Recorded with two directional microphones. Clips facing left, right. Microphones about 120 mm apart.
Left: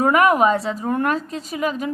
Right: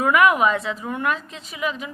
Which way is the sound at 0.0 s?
35° left (ahead or behind).